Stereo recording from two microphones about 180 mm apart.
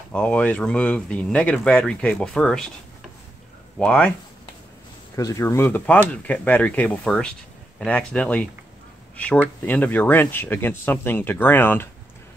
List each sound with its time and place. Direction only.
0.1 s speech: 5° left (ahead or behind)
3.7 s speech: 5° left (ahead or behind)
5.1 s speech: 15° left (ahead or behind)